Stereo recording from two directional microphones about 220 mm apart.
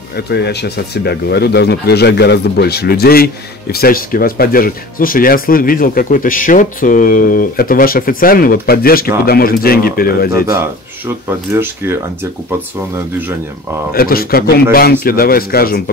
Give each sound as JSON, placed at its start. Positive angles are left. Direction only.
{"t": 0.3, "sound": "speech", "side_deg": 50}
{"t": 10.3, "sound": "speech", "side_deg": -15}
{"t": 13.9, "sound": "speech", "side_deg": 40}